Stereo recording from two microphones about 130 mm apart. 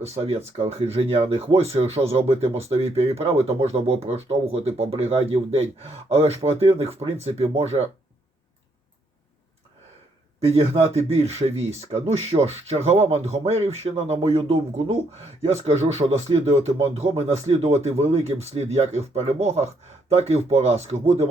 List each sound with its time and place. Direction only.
0.0 s speech: 55° right (ahead or behind)
10.4 s speech: 50° right (ahead or behind)